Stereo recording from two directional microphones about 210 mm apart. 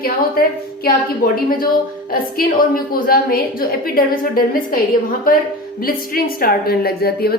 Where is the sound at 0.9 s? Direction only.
45° left (ahead or behind).